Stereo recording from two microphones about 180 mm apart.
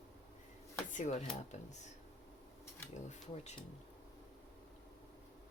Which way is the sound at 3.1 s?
40° left (ahead or behind).